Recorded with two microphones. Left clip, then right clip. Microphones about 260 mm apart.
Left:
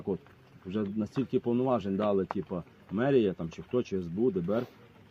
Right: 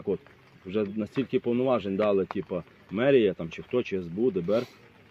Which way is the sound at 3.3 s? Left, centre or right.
Left.